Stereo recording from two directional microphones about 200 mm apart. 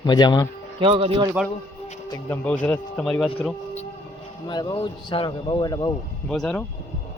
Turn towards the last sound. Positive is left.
turn(degrees=5)  # may be behind; listen again after turning